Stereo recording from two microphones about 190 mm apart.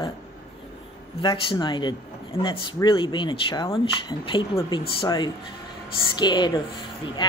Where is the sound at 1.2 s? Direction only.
25° left (ahead or behind).